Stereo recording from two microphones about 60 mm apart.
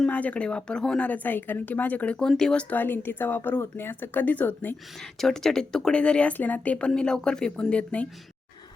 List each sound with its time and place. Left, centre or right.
0.1 s speech: left
1.0 s a woman's voice: left
2.1 s speech: centre
2.6 s speech: left
4.9 s speech: centre